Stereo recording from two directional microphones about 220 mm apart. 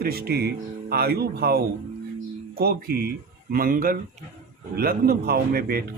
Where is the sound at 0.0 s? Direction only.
45° right (ahead or behind).